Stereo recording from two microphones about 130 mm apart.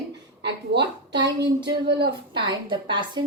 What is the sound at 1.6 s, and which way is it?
A woman's voice, 40° right (ahead or behind).